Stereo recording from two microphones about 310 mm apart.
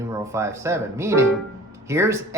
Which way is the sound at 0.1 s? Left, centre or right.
Centre.